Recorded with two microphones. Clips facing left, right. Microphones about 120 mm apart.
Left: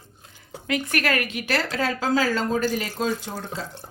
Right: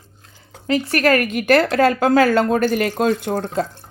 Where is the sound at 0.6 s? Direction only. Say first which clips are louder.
Right 7 dB; 35° right (ahead or behind); by 3.6 s 55° right (ahead or behind).